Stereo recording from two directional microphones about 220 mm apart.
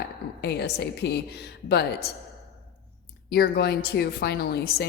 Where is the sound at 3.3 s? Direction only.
45° left (ahead or behind).